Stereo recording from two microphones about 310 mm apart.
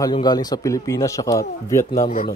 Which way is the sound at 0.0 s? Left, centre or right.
Centre.